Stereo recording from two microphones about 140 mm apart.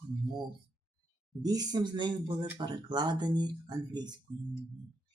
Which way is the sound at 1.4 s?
30° right (ahead or behind).